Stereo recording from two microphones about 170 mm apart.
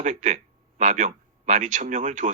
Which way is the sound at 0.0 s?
45° right (ahead or behind).